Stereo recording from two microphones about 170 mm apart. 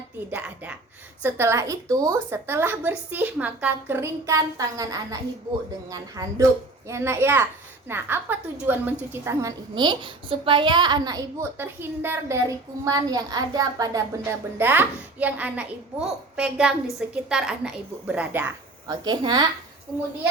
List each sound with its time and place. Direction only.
0.3 s a woman's voice: 10° right (ahead or behind)
18.9 s a woman's voice: 25° right (ahead or behind)